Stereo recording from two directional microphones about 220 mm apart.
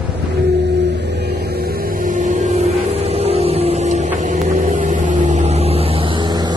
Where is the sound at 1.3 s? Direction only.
45° right (ahead or behind).